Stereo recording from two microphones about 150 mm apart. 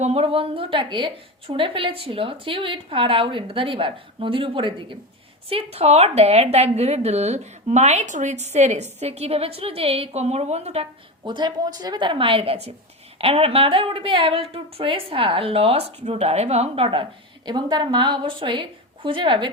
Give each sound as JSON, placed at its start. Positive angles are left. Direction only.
{"t": 0.0, "sound": "a woman's voice", "side_deg": -40}
{"t": 11.2, "sound": "a woman's voice", "side_deg": -30}